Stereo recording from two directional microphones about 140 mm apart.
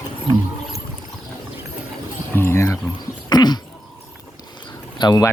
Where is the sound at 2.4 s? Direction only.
20° left (ahead or behind).